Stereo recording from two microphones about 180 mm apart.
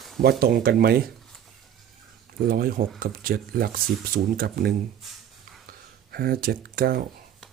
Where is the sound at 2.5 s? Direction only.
55° right (ahead or behind).